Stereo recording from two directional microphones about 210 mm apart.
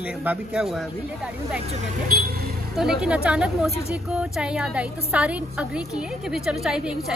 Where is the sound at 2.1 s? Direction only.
45° right (ahead or behind).